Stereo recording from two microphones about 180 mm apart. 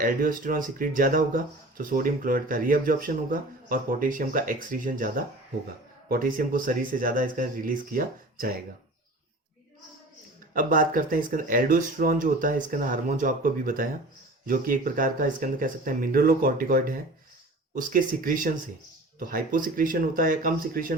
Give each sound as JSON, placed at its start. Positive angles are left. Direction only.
{"t": 0.0, "sound": "speech", "side_deg": -50}
{"t": 10.5, "sound": "speech", "side_deg": -50}